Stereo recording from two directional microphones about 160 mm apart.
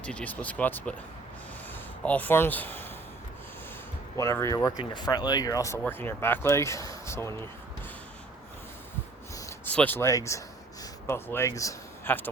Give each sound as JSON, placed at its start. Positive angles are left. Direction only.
{"t": 0.0, "sound": "speech", "side_deg": 5}
{"t": 4.2, "sound": "speech", "side_deg": 20}
{"t": 9.3, "sound": "a sound", "side_deg": 20}
{"t": 9.7, "sound": "speech", "side_deg": 10}